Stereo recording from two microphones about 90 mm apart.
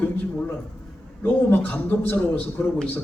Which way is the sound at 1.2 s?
20° left (ahead or behind).